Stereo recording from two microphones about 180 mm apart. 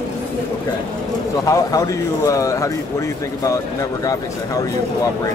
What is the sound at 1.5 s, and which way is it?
Speech, 20° left (ahead or behind).